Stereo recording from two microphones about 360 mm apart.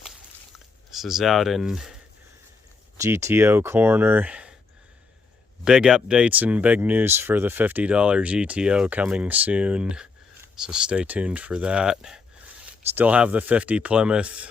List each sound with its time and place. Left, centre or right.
0.9 s speech: centre
3.0 s speech: centre
5.6 s speech: centre